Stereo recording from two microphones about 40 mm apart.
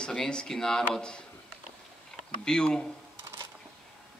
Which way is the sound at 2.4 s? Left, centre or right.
Centre.